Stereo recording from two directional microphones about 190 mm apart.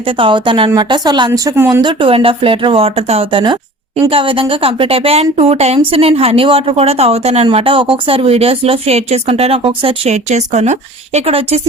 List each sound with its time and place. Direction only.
0.2 s speech: 25° right (ahead or behind)
1.8 s speech: 25° right (ahead or behind)